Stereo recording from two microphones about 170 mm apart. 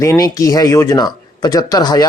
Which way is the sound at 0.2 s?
20° left (ahead or behind).